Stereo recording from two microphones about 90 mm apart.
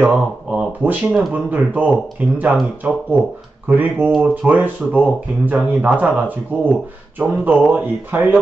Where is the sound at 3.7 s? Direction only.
20° right (ahead or behind).